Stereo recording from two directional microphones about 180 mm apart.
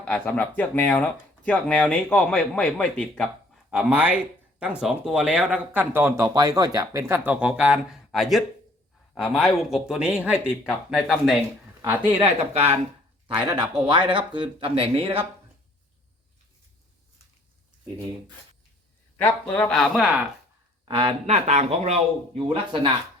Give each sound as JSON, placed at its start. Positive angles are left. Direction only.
{"t": 0.0, "sound": "speech", "side_deg": 5}
{"t": 3.7, "sound": "speech", "side_deg": -5}
{"t": 7.3, "sound": "speech", "side_deg": -5}
{"t": 12.0, "sound": "speech", "side_deg": -35}
{"t": 19.1, "sound": "speech", "side_deg": 10}
{"t": 20.8, "sound": "speech", "side_deg": -30}